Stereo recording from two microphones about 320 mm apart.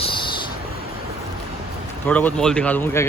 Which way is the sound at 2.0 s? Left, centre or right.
Centre.